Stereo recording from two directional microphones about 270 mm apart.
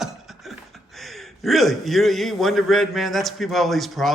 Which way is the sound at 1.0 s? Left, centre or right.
Centre.